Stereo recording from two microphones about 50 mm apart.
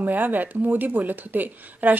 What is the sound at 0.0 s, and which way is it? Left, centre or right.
A woman's voice, right.